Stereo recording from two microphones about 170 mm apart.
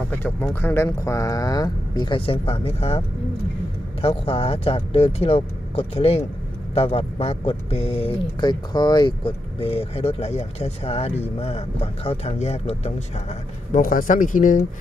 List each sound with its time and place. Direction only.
0.1 s speech: 15° left (ahead or behind); by 3.0 s 35° left (ahead or behind)
4.0 s speech: 35° left (ahead or behind)
13.7 s speech: 50° left (ahead or behind)